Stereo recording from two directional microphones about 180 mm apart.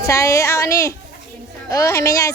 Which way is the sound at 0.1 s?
15° left (ahead or behind).